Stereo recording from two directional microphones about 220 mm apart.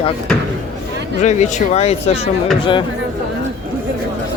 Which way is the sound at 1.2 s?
35° left (ahead or behind).